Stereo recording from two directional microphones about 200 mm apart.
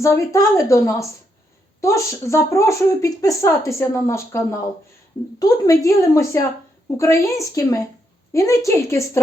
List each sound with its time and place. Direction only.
0.0 s speech: 15° left (ahead or behind)